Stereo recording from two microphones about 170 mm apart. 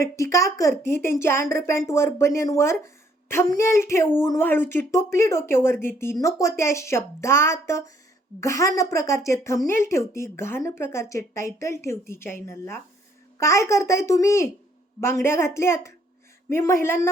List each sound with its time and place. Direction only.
0.0 s speech: 15° left (ahead or behind)